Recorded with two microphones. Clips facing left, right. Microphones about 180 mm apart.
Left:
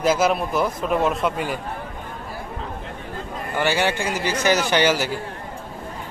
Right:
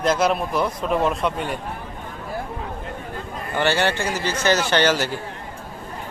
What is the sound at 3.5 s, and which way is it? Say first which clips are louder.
A man's voice: right 1 dB; 10° left (ahead or behind).